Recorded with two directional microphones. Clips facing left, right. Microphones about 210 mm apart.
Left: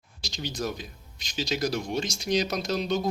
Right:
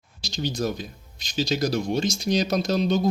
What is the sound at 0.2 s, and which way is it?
Speech, 35° right (ahead or behind).